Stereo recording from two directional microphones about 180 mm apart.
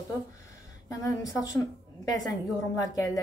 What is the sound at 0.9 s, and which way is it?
A woman's voice, 20° left (ahead or behind).